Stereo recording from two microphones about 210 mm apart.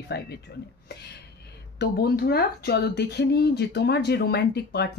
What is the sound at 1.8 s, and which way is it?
Speech, 45° left (ahead or behind).